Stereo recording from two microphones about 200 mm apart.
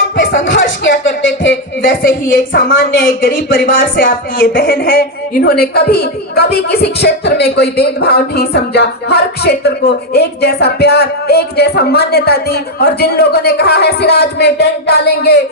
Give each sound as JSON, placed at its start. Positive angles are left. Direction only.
{"t": 0.6, "sound": "speech", "side_deg": 60}
{"t": 1.8, "sound": "speech", "side_deg": 45}